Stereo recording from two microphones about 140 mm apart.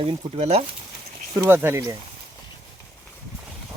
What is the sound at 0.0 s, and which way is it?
Speech, 45° right (ahead or behind).